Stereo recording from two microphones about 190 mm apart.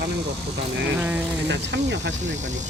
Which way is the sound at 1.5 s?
65° right (ahead or behind).